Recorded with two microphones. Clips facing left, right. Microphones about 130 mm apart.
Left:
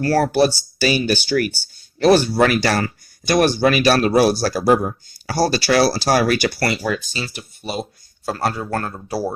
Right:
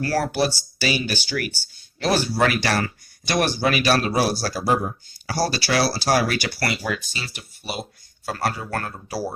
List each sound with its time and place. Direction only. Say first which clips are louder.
0.0 s speech: left 6 dB; 45° left (ahead or behind); by 8.9 s 30° left (ahead or behind)